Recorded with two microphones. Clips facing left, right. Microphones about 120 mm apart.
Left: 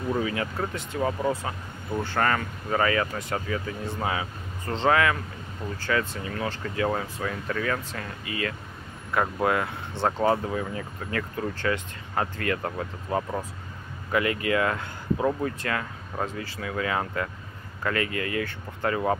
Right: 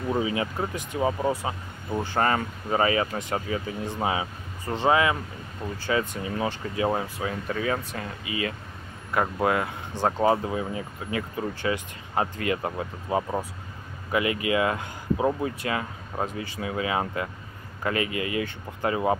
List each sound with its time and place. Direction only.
0.1 s speech: 20° right (ahead or behind)